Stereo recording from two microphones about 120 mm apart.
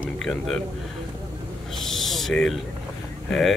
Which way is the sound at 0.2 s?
5° left (ahead or behind).